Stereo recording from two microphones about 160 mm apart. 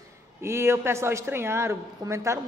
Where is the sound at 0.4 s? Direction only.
15° right (ahead or behind).